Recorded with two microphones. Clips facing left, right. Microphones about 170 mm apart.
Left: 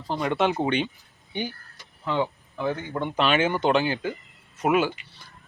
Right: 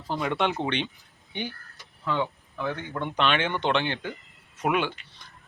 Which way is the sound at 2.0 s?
20° left (ahead or behind).